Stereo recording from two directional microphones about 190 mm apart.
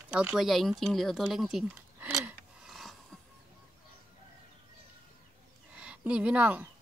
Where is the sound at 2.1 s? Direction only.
5° right (ahead or behind).